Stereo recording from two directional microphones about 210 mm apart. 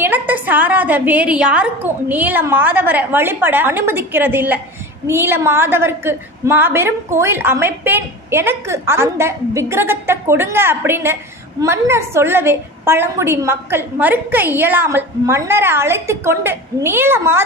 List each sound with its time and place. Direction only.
0.0 s a woman's voice: 10° right (ahead or behind)